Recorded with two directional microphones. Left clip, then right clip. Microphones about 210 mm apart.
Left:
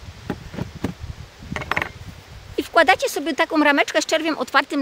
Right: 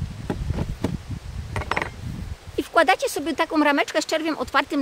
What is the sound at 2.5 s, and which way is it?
Speech, 20° left (ahead or behind).